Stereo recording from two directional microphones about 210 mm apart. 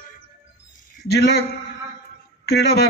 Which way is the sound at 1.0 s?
50° left (ahead or behind).